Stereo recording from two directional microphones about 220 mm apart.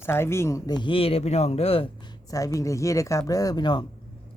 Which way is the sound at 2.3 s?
15° left (ahead or behind).